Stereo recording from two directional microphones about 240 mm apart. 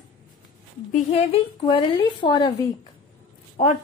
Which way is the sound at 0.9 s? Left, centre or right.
Left.